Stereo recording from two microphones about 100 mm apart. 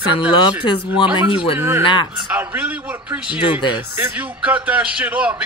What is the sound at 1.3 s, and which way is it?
Speech, 65° left (ahead or behind).